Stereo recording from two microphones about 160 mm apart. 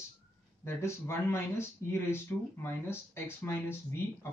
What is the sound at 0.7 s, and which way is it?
Speech, 15° left (ahead or behind).